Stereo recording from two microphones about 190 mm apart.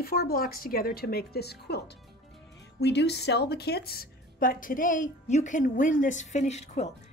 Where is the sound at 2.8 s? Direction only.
65° left (ahead or behind).